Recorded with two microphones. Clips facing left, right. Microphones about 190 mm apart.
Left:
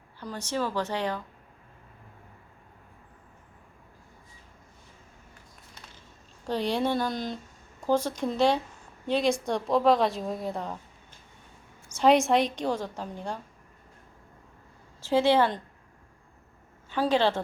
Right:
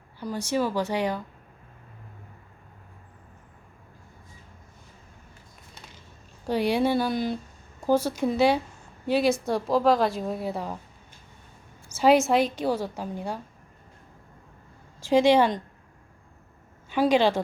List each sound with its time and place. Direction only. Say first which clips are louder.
0.2 s speech: right 4 dB; 10° right (ahead or behind)
6.4 s a woman's voice: right 4 dB; 10° right (ahead or behind)
11.9 s a woman's voice: right 1 dB; 5° right (ahead or behind)
15.0 s speech: right 3 dB; 15° right (ahead or behind)
16.9 s speech: right 3 dB; 15° right (ahead or behind)